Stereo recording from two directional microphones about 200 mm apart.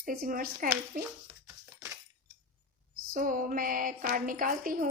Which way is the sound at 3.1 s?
45° right (ahead or behind).